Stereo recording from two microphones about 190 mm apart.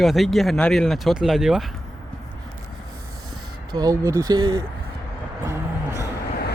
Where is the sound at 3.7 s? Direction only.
20° right (ahead or behind).